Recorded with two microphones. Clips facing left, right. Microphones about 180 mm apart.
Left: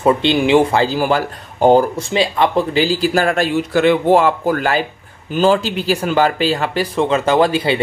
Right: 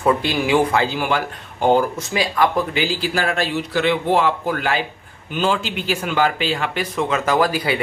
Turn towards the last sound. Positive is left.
turn(degrees=25)  # may be behind; listen again after turning